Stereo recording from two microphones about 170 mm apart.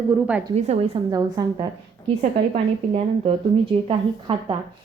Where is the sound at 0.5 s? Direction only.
40° right (ahead or behind).